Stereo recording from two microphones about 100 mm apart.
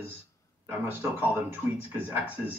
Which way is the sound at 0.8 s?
20° right (ahead or behind).